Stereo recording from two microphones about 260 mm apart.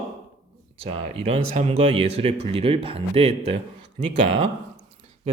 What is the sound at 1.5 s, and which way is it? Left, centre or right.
Speech, right.